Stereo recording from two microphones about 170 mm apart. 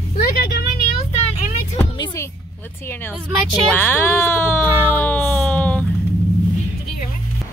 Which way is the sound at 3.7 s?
10° left (ahead or behind).